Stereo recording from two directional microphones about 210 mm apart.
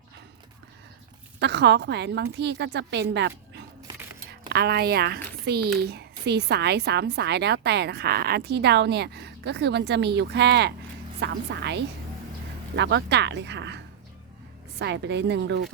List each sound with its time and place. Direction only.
1.4 s a woman's voice: 55° right (ahead or behind)